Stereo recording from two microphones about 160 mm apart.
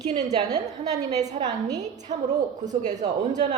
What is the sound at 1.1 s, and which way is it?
Speech, 45° right (ahead or behind).